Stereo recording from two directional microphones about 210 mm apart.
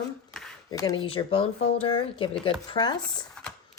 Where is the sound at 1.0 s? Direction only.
25° left (ahead or behind).